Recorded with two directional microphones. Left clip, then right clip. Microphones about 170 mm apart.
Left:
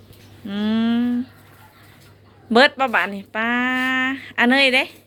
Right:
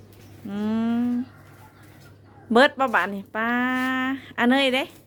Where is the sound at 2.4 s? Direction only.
15° right (ahead or behind).